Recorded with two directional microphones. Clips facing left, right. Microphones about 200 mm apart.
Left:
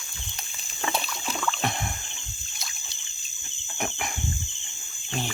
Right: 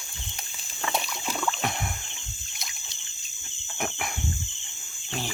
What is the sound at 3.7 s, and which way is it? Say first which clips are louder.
Insect: even; 5° right (ahead or behind).